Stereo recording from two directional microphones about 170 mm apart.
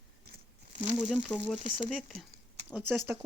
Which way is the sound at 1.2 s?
Centre (ahead or behind).